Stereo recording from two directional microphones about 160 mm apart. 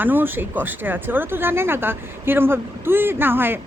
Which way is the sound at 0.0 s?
10° right (ahead or behind).